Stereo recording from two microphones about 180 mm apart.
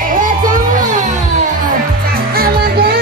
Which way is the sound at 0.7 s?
45° right (ahead or behind).